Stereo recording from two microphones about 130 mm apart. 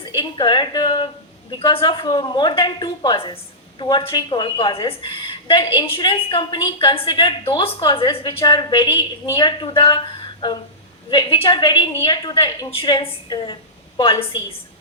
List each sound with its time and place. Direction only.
0.2 s a woman's voice: 35° left (ahead or behind)